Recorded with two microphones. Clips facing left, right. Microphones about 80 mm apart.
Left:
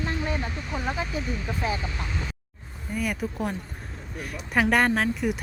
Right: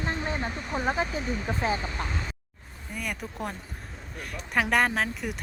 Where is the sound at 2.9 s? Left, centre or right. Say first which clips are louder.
Left 6 dB; centre.